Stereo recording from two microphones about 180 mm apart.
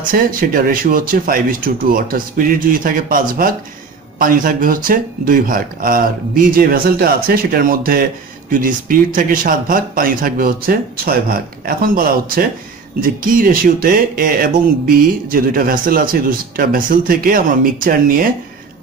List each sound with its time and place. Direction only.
0.0 s speech: 50° right (ahead or behind)